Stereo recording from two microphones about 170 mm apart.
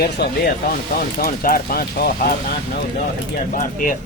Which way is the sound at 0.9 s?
60° left (ahead or behind).